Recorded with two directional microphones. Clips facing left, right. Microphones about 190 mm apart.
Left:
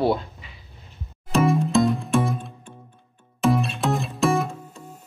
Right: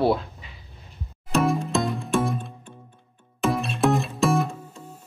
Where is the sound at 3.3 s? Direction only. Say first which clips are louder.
Left 3 dB; centre (ahead or behind).